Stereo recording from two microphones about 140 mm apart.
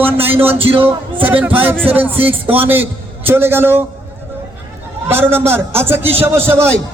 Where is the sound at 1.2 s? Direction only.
10° right (ahead or behind).